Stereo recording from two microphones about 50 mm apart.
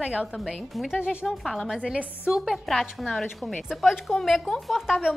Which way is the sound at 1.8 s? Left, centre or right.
Right.